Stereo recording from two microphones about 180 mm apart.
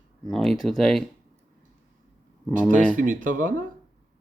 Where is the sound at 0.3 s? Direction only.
Centre (ahead or behind).